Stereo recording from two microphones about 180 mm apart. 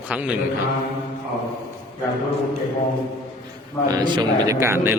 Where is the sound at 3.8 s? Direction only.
20° right (ahead or behind).